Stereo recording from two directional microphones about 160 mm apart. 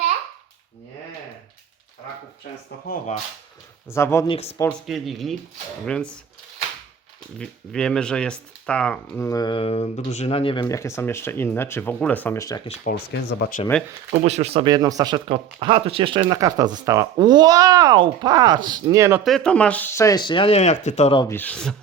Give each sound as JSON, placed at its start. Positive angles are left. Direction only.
{"t": 3.8, "sound": "speech", "side_deg": 15}
{"t": 4.3, "sound": "speech", "side_deg": 40}
{"t": 4.9, "sound": "speech", "side_deg": 0}
{"t": 7.3, "sound": "speech", "side_deg": 5}
{"t": 12.9, "sound": "speech", "side_deg": 65}
{"t": 13.7, "sound": "speech", "side_deg": 10}
{"t": 14.3, "sound": "speech", "side_deg": -40}
{"t": 19.2, "sound": "speech", "side_deg": 5}
{"t": 21.3, "sound": "speech", "side_deg": 10}